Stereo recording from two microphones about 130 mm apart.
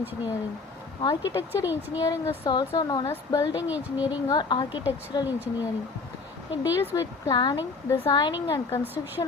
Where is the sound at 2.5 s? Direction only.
35° left (ahead or behind).